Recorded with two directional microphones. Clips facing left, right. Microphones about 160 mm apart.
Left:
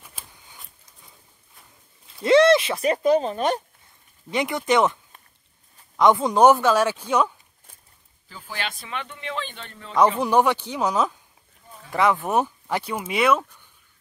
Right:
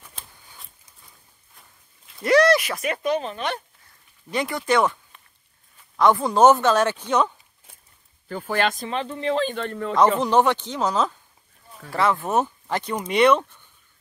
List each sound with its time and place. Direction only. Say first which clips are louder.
0.0 s a sound: even; 5° left (ahead or behind)
2.2 s speech: left 2 dB; 25° left (ahead or behind); by 3.6 s 40° left (ahead or behind)
4.3 s speech: left 1 dB; 20° left (ahead or behind)
5.9 s speech: even; 20° left (ahead or behind)
8.3 s speech: right 10 dB; 55° right (ahead or behind)
10.2 s speech: even; 10° left (ahead or behind)